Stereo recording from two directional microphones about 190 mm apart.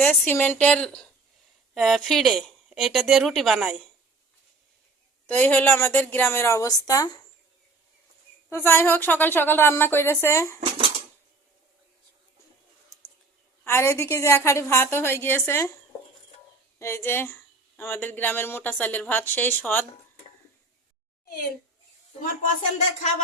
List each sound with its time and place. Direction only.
0.0 s speech: 10° left (ahead or behind)
5.2 s speech: 10° left (ahead or behind)
8.4 s speech: 10° left (ahead or behind)
10.6 s speech: 30° right (ahead or behind)
13.7 s speech: 15° left (ahead or behind)
16.7 s speech: 15° left (ahead or behind)